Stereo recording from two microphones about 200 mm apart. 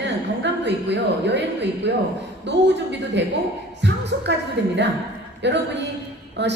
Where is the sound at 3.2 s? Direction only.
60° right (ahead or behind).